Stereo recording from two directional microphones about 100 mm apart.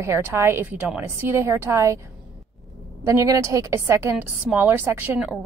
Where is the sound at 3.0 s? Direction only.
35° right (ahead or behind).